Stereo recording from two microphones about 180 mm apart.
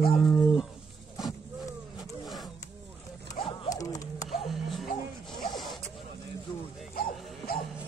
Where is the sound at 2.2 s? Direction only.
Centre (ahead or behind).